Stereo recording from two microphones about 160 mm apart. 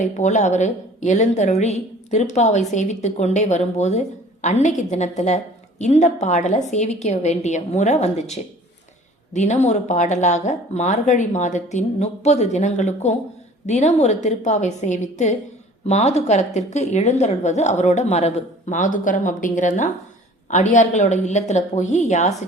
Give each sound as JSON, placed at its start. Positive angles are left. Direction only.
{"t": 0.0, "sound": "a woman's voice", "side_deg": 50}